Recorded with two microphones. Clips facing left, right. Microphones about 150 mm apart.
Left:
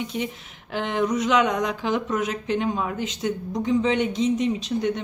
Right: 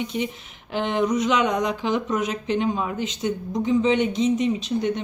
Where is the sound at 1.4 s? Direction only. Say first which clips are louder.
Even; 15° right (ahead or behind).